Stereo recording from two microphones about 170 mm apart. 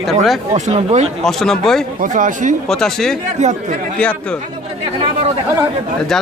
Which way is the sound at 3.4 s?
40° right (ahead or behind).